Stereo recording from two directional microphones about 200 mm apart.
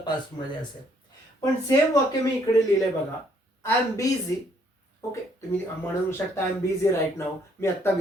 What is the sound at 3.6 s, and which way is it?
Speech, 15° left (ahead or behind).